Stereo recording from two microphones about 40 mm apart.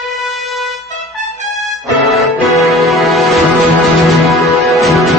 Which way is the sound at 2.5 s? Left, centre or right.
Centre.